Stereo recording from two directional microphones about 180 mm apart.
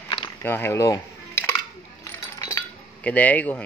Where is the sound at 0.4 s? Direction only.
10° left (ahead or behind).